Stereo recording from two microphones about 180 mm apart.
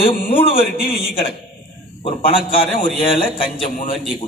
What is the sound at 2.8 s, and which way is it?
Speech, 30° left (ahead or behind).